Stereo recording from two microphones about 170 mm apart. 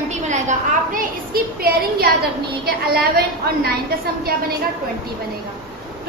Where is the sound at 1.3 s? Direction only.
60° right (ahead or behind).